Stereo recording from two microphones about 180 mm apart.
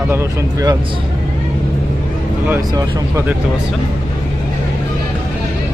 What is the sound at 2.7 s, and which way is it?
Speech, 15° right (ahead or behind).